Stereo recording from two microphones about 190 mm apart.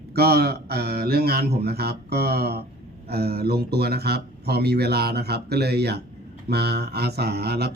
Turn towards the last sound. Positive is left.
turn(degrees=-60)  # may be behind; listen again after turning